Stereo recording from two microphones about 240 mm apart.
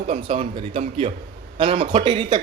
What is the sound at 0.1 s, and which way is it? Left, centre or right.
A man's voice, right.